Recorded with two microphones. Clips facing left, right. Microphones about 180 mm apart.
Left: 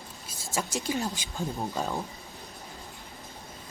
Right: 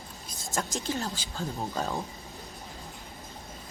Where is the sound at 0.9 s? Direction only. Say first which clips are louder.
Left 2 dB; 15° left (ahead or behind).